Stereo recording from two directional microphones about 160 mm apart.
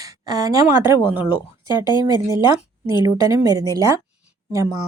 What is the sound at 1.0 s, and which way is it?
Speech, 10° right (ahead or behind).